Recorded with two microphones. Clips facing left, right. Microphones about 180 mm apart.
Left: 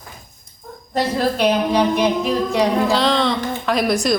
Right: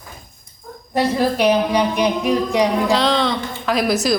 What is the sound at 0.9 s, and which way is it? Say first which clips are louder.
A woman's voice: right 1 dB; 10° right (ahead or behind).